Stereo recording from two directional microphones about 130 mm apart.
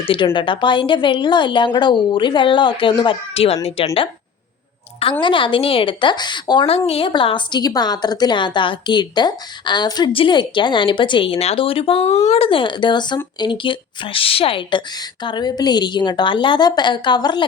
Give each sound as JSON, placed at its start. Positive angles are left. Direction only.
{"t": 0.0, "sound": "a woman's voice", "side_deg": 45}
{"t": 5.2, "sound": "a woman's voice", "side_deg": 40}
{"t": 12.5, "sound": "a woman's voice", "side_deg": 40}